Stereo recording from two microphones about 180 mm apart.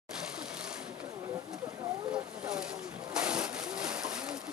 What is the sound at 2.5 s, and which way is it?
Splash, 5° right (ahead or behind).